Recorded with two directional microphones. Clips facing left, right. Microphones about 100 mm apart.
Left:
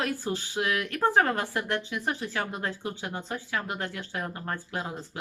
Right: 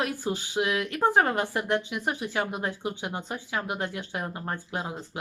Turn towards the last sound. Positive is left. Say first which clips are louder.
# right 1 dB
turn(degrees=-20)  # may be behind; listen again after turning